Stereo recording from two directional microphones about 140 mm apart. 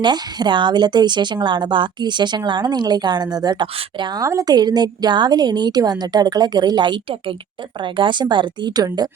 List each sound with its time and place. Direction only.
0.0 s a woman's voice: 30° right (ahead or behind)